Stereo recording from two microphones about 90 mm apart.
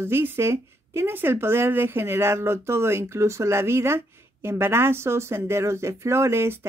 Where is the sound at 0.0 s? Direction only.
25° right (ahead or behind).